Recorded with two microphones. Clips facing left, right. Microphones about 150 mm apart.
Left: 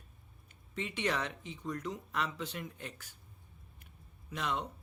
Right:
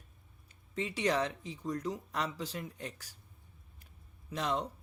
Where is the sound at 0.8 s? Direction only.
35° right (ahead or behind).